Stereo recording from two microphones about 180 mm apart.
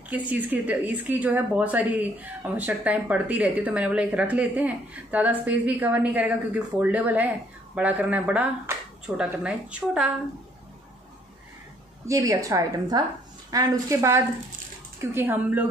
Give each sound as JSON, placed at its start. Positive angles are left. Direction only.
{"t": 0.1, "sound": "speech", "side_deg": -10}
{"t": 12.1, "sound": "speech", "side_deg": -20}